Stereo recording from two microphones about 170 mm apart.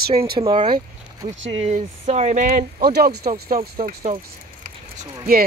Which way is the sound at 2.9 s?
70° right (ahead or behind).